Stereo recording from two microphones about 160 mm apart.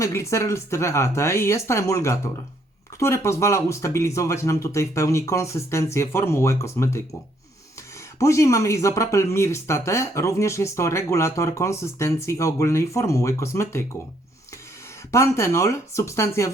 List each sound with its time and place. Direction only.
0.0 s speech: 15° left (ahead or behind)
8.2 s speech: 20° left (ahead or behind)
15.1 s speech: 15° left (ahead or behind)